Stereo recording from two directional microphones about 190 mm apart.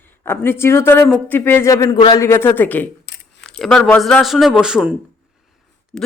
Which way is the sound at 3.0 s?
65° left (ahead or behind).